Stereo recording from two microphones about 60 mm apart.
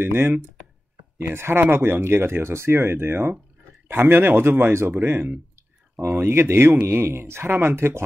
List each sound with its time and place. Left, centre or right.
0.0 s speech: right
1.3 s speech: right